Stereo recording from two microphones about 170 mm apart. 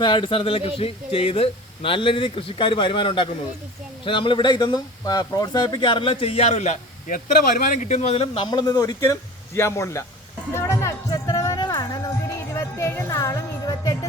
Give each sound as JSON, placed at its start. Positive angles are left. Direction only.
{"t": 0.0, "sound": "a man's voice", "side_deg": 30}
{"t": 10.5, "sound": "music", "side_deg": 15}